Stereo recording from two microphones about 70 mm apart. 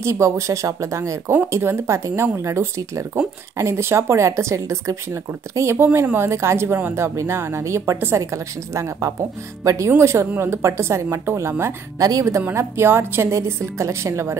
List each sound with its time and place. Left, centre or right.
0.0 s speech: right
12.0 s a woman's voice: right
12.5 s speech: right